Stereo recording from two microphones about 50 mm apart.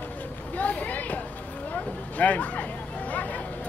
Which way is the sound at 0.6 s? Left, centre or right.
Left.